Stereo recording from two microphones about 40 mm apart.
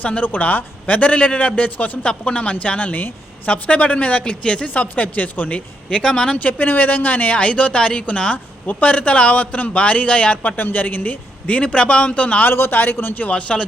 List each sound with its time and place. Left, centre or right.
0.0 s a man's voice: left
2.0 s a man's voice: left
4.7 s a man's voice: left
6.0 s speech: left
6.4 s speech: left
7.3 s a man's voice: left
10.6 s speech: left
11.6 s a man's voice: left
12.5 s a man's voice: left
13.3 s speech: left